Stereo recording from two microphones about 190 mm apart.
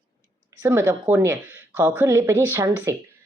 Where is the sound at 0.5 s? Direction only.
15° right (ahead or behind).